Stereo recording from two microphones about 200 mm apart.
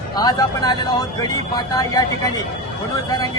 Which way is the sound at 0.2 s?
20° left (ahead or behind).